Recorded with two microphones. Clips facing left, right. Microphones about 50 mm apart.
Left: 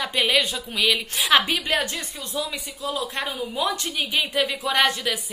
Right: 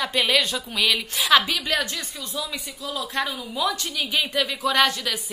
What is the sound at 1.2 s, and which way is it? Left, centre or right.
A woman's voice, left.